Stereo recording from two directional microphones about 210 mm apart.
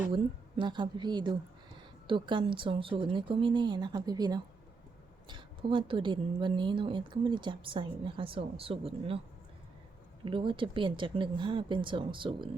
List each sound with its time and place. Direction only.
0.1 s a woman's voice: 25° right (ahead or behind)
10.2 s a woman's voice: 25° right (ahead or behind)